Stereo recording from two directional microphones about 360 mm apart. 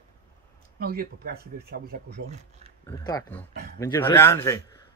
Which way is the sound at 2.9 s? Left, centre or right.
Centre.